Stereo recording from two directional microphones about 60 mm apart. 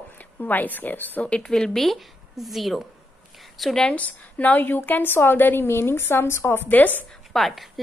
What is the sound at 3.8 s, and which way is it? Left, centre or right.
A woman's voice, left.